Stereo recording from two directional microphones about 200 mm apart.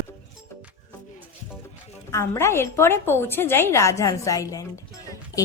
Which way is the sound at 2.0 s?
15° left (ahead or behind).